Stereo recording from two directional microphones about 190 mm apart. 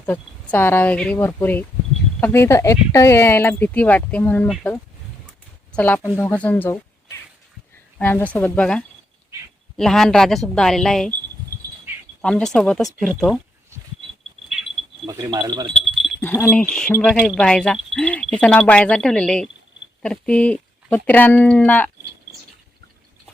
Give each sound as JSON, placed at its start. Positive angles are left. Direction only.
{"t": 0.0, "sound": "speech", "side_deg": 10}
{"t": 5.7, "sound": "speech", "side_deg": 5}
{"t": 12.2, "sound": "speech", "side_deg": 5}
{"t": 15.0, "sound": "speech", "side_deg": -20}
{"t": 15.7, "sound": "speech", "side_deg": 5}